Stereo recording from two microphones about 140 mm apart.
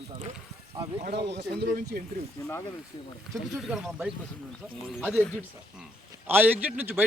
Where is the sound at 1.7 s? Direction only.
90° right.